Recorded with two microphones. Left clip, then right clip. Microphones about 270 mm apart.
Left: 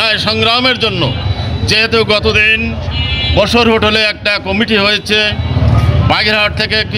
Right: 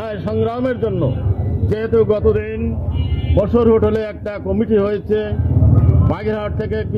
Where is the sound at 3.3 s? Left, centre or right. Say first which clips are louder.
Left 3 dB; left.